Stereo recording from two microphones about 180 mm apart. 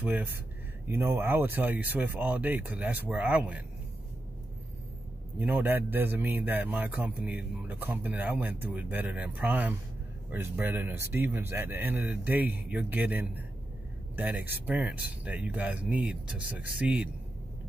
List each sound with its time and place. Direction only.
0.0 s a man's voice: 10° right (ahead or behind)
5.4 s a man's voice: 10° right (ahead or behind)